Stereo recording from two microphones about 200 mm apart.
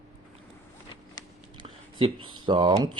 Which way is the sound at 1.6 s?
25° right (ahead or behind).